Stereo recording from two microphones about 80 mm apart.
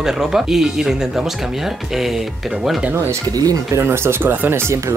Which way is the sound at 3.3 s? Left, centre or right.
Right.